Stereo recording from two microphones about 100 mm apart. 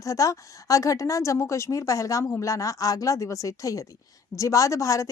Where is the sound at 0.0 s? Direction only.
35° left (ahead or behind).